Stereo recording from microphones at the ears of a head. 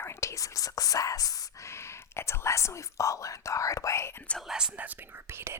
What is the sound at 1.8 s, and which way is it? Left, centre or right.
Speech, left.